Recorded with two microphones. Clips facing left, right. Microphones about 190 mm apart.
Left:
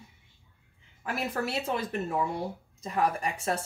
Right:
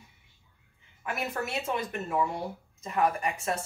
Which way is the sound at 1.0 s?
30° left (ahead or behind).